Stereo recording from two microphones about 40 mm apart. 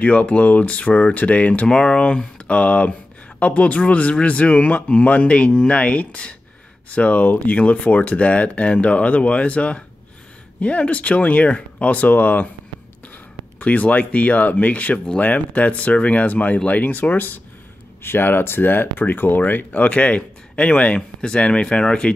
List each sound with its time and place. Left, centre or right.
0.0 s speech: left
1.7 s speech: left
13.6 s speech: left
18.0 s speech: left